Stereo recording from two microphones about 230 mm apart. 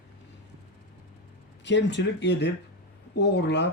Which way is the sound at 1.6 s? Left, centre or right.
Left.